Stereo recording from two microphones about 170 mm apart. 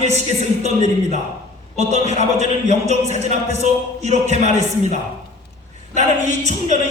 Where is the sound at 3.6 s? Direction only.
40° right (ahead or behind).